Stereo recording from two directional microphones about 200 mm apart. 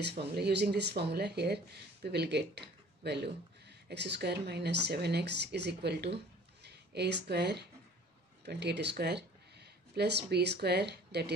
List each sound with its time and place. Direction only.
0.0 s speech: 55° right (ahead or behind)